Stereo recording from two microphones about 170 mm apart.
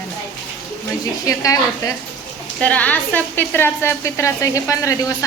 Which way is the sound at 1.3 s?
20° left (ahead or behind).